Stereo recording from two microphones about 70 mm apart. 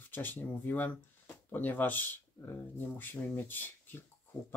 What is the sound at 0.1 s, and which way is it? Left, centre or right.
Speech, left.